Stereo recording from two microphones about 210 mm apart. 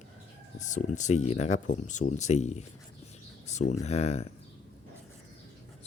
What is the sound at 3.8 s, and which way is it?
Speech, 30° left (ahead or behind).